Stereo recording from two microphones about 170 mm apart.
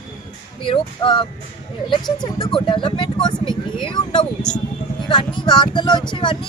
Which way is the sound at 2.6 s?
30° left (ahead or behind).